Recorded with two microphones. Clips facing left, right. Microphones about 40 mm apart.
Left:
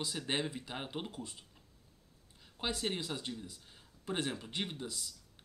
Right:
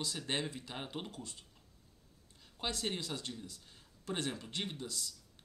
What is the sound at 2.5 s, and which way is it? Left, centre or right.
Speech, centre.